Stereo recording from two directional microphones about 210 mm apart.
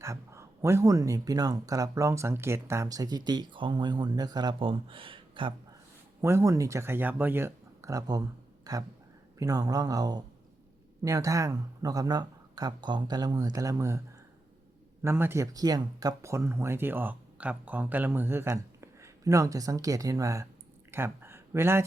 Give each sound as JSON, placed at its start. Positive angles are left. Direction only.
{"t": 0.0, "sound": "speech", "side_deg": -15}
{"t": 15.0, "sound": "speech", "side_deg": -10}
{"t": 20.9, "sound": "a sound", "side_deg": -10}